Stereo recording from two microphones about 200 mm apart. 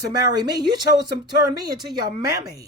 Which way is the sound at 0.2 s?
20° right (ahead or behind).